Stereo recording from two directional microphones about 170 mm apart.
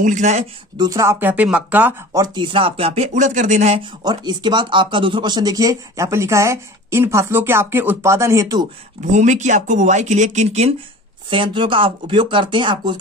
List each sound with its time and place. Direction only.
0.0 s speech: 45° right (ahead or behind)
0.7 s speech: 20° right (ahead or behind)
2.2 s speech: 30° right (ahead or behind)
4.0 s speech: 25° right (ahead or behind)
9.1 s speech: 45° right (ahead or behind)
11.2 s speech: 30° right (ahead or behind)